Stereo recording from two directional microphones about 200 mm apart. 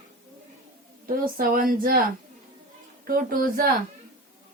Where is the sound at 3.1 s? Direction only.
45° right (ahead or behind).